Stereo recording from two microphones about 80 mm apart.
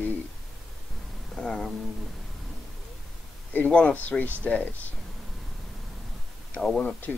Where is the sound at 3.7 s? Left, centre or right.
Centre.